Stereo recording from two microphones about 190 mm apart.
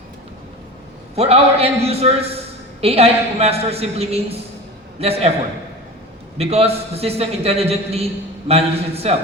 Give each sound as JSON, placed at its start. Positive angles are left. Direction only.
{"t": 1.1, "sound": "a man's voice", "side_deg": -30}
{"t": 6.3, "sound": "a man's voice", "side_deg": -30}